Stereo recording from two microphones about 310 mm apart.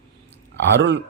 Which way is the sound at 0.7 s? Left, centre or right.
Right.